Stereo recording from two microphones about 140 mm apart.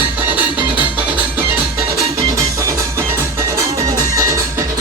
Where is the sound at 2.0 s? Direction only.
25° right (ahead or behind).